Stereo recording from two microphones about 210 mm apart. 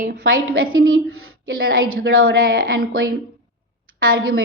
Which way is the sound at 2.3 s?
45° right (ahead or behind).